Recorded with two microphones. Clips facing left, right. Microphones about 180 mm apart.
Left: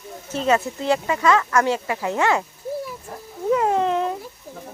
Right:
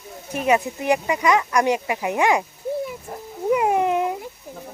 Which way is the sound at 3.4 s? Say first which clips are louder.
Even; 15° right (ahead or behind).